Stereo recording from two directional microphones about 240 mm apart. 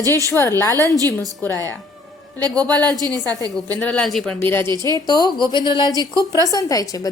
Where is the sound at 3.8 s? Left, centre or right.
Centre.